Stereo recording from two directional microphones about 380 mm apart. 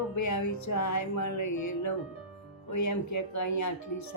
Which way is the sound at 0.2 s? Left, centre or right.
Left.